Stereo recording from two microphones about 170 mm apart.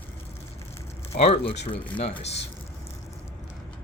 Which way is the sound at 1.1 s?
35° left (ahead or behind).